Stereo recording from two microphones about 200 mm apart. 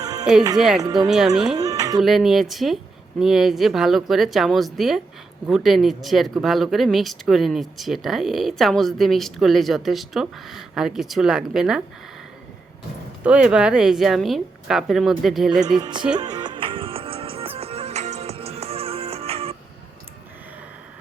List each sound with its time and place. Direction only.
0.0 s music: 20° right (ahead or behind)
1.0 s speech: centre (ahead or behind)
1.5 s a sound: 20° right (ahead or behind)
2.0 s speech: centre (ahead or behind)
13.2 s speech: 5° right (ahead or behind)
15.8 s music: 20° right (ahead or behind)